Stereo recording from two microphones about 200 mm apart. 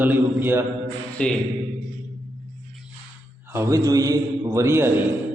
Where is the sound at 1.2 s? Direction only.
5° left (ahead or behind).